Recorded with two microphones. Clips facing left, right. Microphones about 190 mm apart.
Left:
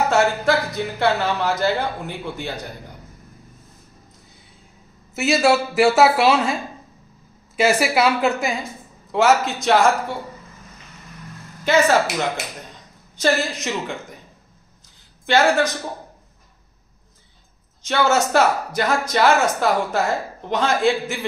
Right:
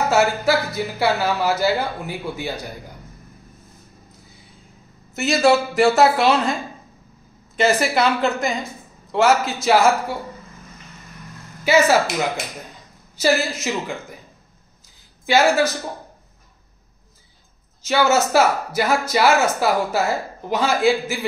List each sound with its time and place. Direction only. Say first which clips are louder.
0.1 s speech: even; 5° right (ahead or behind)
5.1 s a woman's voice: right 1 dB; 5° left (ahead or behind)
11.6 s speech: right 1 dB; 5° right (ahead or behind)
15.2 s speech: right 1 dB; 5° right (ahead or behind)
17.8 s speech: right 1 dB; 5° right (ahead or behind)